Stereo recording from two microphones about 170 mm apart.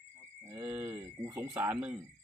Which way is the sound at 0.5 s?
20° right (ahead or behind).